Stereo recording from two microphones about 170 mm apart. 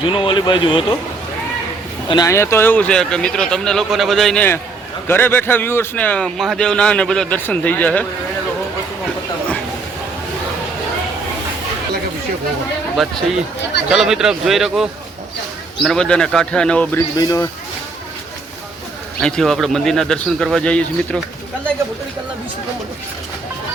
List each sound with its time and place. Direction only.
0.0 s speech: 30° left (ahead or behind)
2.0 s a man's voice: 20° left (ahead or behind)
13.0 s speech: centre (ahead or behind)
17.2 s speech: 20° left (ahead or behind)
19.2 s speech: centre (ahead or behind)